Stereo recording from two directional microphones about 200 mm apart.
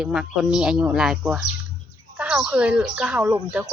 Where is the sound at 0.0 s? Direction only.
5° right (ahead or behind).